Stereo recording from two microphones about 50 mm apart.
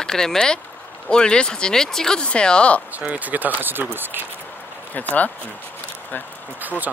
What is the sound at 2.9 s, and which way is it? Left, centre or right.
Speech, right.